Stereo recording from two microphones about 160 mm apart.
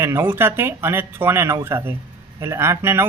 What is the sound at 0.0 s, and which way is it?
Speech, 15° right (ahead or behind).